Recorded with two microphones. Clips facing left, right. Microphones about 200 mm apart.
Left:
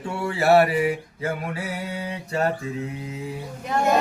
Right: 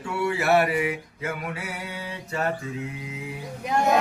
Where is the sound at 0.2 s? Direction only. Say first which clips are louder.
Left 4 dB; 35° left (ahead or behind).